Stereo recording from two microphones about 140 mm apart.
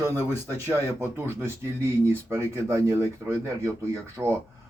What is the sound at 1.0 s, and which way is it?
Speech, 20° right (ahead or behind).